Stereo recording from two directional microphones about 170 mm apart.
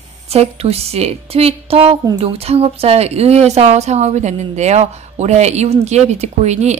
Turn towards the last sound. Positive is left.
turn(degrees=-40)  # may be behind; listen again after turning